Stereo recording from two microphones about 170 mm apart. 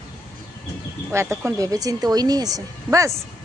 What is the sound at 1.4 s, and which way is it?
Speech, 20° right (ahead or behind).